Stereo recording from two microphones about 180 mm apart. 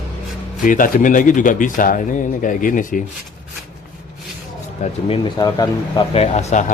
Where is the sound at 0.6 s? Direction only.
50° left (ahead or behind).